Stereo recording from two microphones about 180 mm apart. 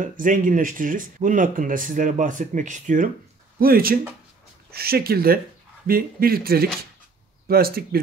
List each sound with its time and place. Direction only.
0.0 s speech: 50° right (ahead or behind)
3.5 s speech: 55° right (ahead or behind)